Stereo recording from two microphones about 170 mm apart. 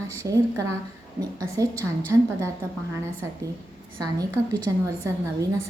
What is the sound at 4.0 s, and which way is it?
A woman's voice, 20° right (ahead or behind).